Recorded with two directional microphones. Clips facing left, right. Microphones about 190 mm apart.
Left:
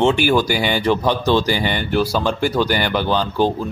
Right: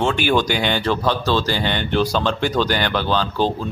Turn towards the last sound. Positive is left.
turn(degrees=15)  # may be behind; listen again after turning